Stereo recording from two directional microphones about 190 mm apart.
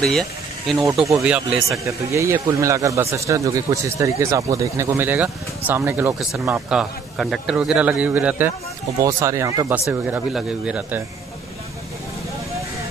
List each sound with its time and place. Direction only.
0.0 s speech: centre (ahead or behind)
1.9 s speech: 15° right (ahead or behind)
9.8 s speech: 5° right (ahead or behind)